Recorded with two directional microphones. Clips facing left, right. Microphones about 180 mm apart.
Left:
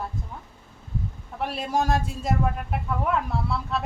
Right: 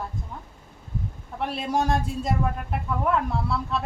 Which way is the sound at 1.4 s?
Centre (ahead or behind).